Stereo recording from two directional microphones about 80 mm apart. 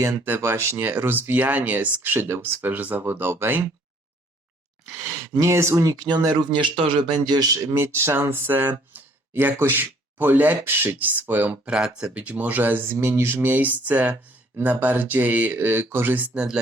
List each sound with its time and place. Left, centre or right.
0.0 s speech: right
5.4 s speech: right
5.8 s speech: right
7.8 s speech: right; by 16.6 s centre